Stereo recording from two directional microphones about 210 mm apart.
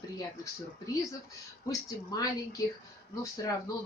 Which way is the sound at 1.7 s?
15° left (ahead or behind).